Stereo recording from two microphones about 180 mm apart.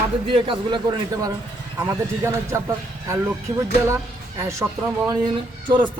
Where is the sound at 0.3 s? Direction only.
30° right (ahead or behind).